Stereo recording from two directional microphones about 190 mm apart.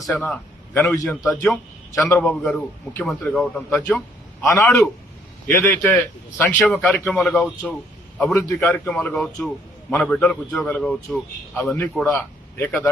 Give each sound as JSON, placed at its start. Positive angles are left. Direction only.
{"t": 0.0, "sound": "a man's voice", "side_deg": 5}
{"t": 8.2, "sound": "a man's voice", "side_deg": 15}